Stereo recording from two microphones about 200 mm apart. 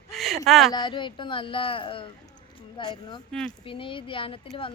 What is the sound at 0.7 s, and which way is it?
Speech, 25° left (ahead or behind).